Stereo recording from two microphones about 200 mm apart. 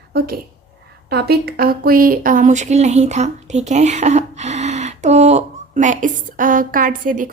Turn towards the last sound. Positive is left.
turn(degrees=-40)  # may be behind; listen again after turning